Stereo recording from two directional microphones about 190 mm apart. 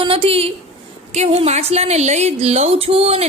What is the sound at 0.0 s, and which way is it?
A woman's voice, 30° right (ahead or behind).